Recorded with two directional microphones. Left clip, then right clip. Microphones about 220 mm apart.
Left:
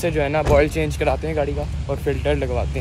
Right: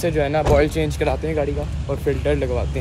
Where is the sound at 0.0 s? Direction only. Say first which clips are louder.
Right 1 dB; centre (ahead or behind).